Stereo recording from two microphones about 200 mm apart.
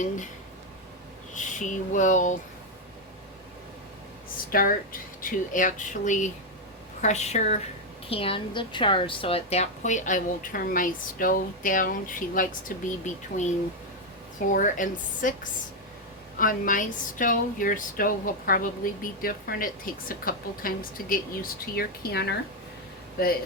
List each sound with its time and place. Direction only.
1.3 s speech: 40° left (ahead or behind)
4.5 s a woman's voice: 45° left (ahead or behind)
16.4 s speech: 40° left (ahead or behind)